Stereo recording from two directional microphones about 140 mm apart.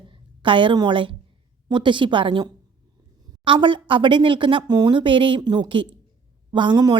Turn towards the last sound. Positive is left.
turn(degrees=-30)  # may be behind; listen again after turning